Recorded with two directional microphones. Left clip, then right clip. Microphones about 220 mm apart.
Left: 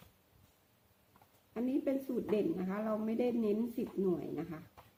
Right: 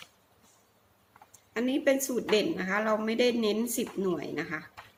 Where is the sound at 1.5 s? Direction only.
10° right (ahead or behind).